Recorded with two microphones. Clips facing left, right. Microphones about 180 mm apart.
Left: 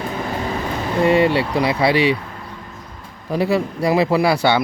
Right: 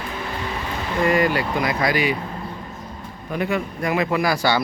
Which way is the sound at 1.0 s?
30° left (ahead or behind).